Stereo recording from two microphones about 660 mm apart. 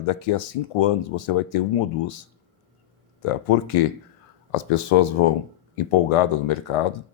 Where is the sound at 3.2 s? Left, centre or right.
Left.